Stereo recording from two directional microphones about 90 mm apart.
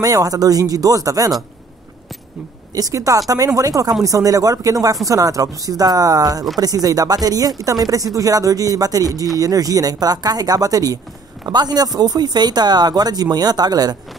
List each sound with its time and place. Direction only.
0.0 s speech: 40° right (ahead or behind)
2.7 s speech: 40° right (ahead or behind)